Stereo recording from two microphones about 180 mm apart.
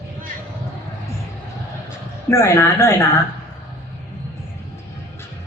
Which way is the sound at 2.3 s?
15° left (ahead or behind).